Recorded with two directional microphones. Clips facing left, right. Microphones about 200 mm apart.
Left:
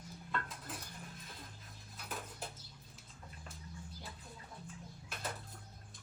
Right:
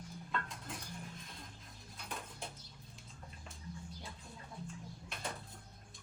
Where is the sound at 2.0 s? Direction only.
5° left (ahead or behind).